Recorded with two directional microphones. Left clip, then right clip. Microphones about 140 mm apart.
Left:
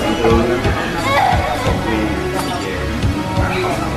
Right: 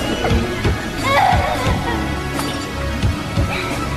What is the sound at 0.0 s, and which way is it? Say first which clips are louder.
Music: left 6 dB; centre (ahead or behind).